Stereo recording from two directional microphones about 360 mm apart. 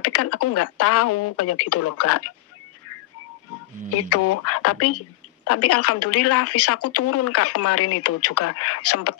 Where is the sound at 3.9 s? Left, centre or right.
Left.